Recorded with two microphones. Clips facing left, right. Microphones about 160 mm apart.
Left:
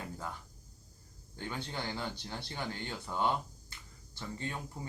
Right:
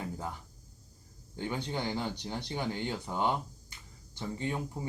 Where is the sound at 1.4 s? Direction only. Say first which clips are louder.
Right 5 dB; 15° right (ahead or behind).